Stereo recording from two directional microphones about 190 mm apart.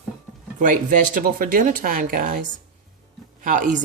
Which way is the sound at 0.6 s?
45° right (ahead or behind).